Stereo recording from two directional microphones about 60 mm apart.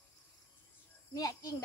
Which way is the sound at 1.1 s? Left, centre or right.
Left.